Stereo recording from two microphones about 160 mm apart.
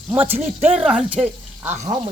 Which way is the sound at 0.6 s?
5° right (ahead or behind).